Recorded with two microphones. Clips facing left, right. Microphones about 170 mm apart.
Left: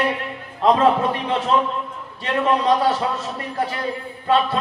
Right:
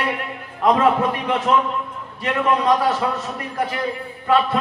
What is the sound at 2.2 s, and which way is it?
A man's voice, 30° left (ahead or behind).